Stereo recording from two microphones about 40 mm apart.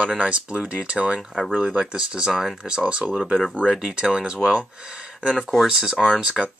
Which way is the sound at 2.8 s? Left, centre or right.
Right.